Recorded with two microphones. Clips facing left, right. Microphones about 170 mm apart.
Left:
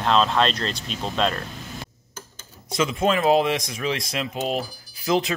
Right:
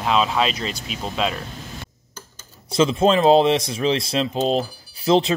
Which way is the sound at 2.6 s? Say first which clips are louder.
Right 5 dB; 30° right (ahead or behind).